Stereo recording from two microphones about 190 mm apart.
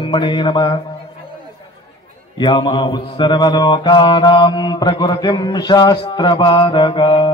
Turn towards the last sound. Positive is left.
turn(degrees=25)  # may be behind; listen again after turning